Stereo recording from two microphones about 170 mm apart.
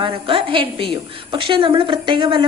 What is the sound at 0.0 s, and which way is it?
A woman's voice, 30° right (ahead or behind).